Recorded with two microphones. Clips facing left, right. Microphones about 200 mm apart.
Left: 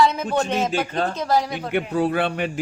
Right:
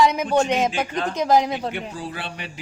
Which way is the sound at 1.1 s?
15° right (ahead or behind).